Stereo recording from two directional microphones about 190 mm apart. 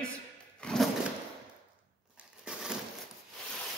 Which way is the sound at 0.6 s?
5° left (ahead or behind).